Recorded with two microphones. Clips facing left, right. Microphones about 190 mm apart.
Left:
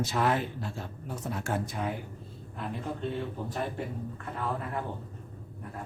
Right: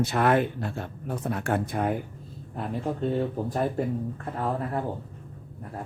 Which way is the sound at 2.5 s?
45° right (ahead or behind).